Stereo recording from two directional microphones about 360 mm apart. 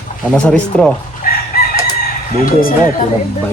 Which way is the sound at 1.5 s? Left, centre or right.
Left.